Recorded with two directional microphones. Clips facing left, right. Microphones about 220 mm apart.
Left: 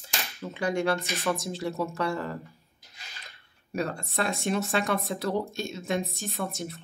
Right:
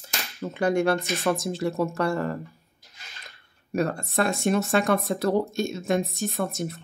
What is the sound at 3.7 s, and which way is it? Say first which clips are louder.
Speech: right 5 dB; 50° right (ahead or behind).